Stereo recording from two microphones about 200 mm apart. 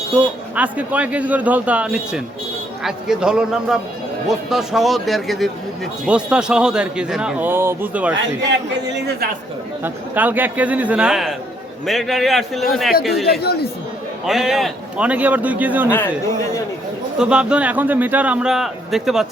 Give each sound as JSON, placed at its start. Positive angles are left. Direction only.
{"t": 0.1, "sound": "speech", "side_deg": -5}
{"t": 9.8, "sound": "speech", "side_deg": -10}
{"t": 13.4, "sound": "speech", "side_deg": 55}
{"t": 14.3, "sound": "speech", "side_deg": 0}
{"t": 17.2, "sound": "speech", "side_deg": -5}